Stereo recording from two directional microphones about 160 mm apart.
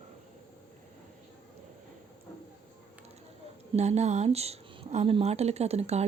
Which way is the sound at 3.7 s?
45° right (ahead or behind).